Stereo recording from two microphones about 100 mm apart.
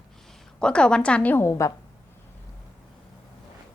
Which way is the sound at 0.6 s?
10° left (ahead or behind).